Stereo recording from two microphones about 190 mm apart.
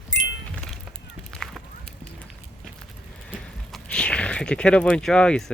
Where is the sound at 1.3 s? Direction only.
Centre (ahead or behind).